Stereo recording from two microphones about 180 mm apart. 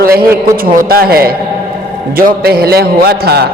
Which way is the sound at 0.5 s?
55° right (ahead or behind).